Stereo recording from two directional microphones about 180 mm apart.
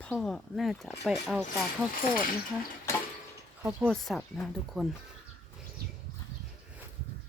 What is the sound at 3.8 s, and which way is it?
Speech, centre (ahead or behind).